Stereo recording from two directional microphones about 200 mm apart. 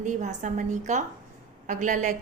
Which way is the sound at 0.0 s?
35° right (ahead or behind).